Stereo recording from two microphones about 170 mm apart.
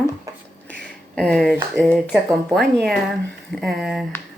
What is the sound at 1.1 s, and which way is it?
Speech, 5° left (ahead or behind).